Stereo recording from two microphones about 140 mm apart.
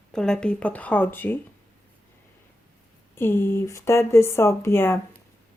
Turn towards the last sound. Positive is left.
turn(degrees=15)  # may be behind; listen again after turning